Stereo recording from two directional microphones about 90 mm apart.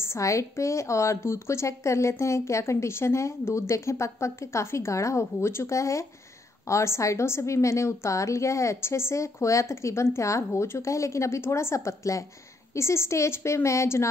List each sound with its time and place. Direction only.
0.0 s a woman's voice: 35° left (ahead or behind)